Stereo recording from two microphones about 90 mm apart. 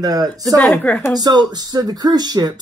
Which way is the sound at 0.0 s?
45° right (ahead or behind).